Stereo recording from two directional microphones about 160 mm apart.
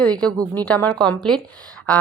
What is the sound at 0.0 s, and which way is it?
A woman's voice, 5° left (ahead or behind).